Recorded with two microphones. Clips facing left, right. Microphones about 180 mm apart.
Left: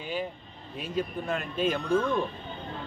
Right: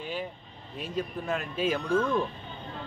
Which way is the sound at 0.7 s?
Centre (ahead or behind).